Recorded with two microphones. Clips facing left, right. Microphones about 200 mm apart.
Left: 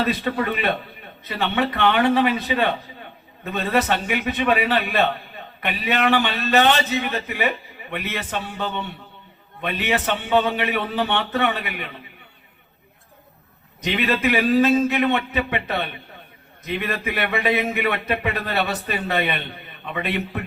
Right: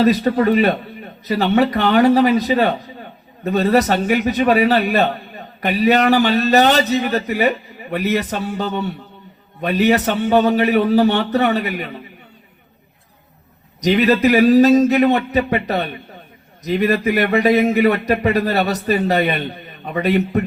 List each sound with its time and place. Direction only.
0.0 s a man's voice: 40° right (ahead or behind)
13.8 s a man's voice: 40° right (ahead or behind)